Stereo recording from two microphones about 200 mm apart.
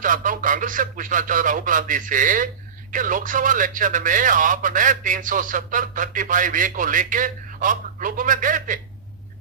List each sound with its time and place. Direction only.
0.0 s speech: 40° right (ahead or behind)